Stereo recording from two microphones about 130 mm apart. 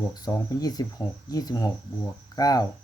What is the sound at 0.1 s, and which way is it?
Speech, 25° left (ahead or behind).